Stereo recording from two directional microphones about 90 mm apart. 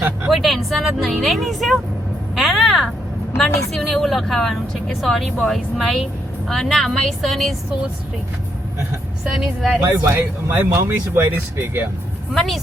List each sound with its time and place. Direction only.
0.3 s a woman's voice: centre (ahead or behind)
2.3 s a sound: centre (ahead or behind)
3.4 s a woman's voice: 5° left (ahead or behind)
9.3 s a woman's voice: 5° right (ahead or behind)
9.8 s speech: 25° right (ahead or behind)
12.3 s a woman's voice: centre (ahead or behind)